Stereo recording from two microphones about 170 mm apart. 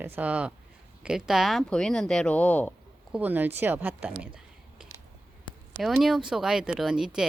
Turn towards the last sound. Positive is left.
turn(degrees=-5)  # may be behind; listen again after turning